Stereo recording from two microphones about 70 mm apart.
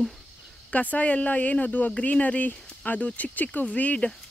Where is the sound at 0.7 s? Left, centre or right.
Left.